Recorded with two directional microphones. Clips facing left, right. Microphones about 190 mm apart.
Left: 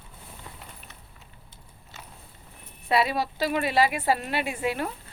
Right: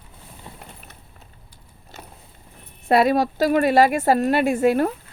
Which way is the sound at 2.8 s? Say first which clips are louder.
Right 8 dB; 45° right (ahead or behind).